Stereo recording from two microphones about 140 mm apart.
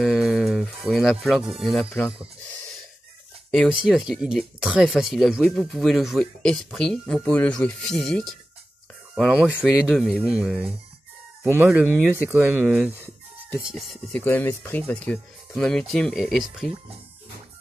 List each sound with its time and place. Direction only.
0.0 s a sound: centre (ahead or behind)
1.2 s speech: centre (ahead or behind)
3.5 s speech: centre (ahead or behind)
14.1 s speech: 10° left (ahead or behind)